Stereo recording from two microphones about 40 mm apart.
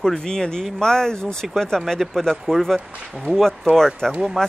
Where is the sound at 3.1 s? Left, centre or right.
Centre.